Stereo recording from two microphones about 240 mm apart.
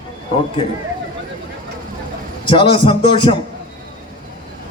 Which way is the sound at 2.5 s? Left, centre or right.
Left.